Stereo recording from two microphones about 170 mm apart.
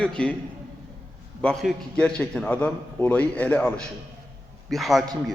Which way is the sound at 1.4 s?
5° left (ahead or behind).